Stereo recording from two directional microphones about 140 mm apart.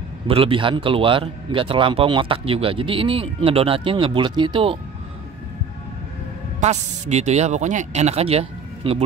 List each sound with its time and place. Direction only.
0.3 s a man's voice: 40° right (ahead or behind)
6.6 s speech: 55° right (ahead or behind)